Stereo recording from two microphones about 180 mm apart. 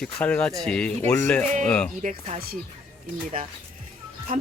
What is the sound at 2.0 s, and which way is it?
Speech, 45° right (ahead or behind).